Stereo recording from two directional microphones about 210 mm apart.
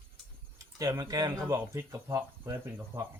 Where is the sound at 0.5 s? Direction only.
15° right (ahead or behind).